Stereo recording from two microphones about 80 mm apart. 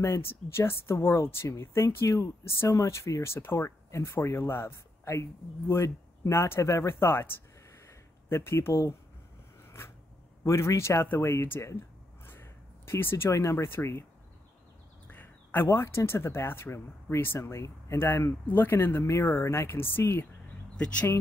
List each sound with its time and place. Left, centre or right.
0.0 s speech: left
7.8 s a sound: left
10.4 s speech: left
15.0 s speech: left
17.9 s speech: left
20.7 s speech: centre